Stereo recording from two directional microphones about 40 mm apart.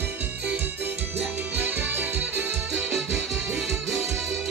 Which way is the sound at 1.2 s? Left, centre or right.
Right.